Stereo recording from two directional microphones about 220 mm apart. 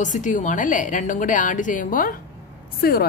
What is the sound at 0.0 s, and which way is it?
A woman's voice, 35° left (ahead or behind).